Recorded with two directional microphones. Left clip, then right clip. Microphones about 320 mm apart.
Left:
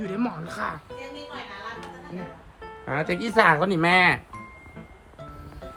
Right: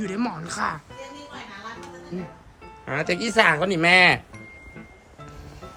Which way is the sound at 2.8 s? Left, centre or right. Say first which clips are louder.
Right 2 dB; centre.